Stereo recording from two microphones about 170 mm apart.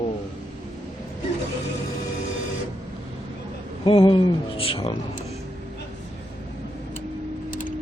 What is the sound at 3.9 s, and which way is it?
Speech, 30° left (ahead or behind).